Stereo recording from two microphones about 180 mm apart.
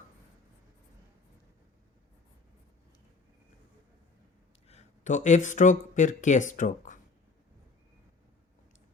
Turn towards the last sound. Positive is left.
turn(degrees=45)  # may be behind; listen again after turning